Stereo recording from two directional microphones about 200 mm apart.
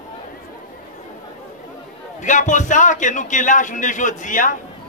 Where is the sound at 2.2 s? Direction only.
40° left (ahead or behind).